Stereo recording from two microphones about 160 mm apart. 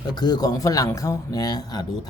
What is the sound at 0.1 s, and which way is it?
Speech, 25° left (ahead or behind).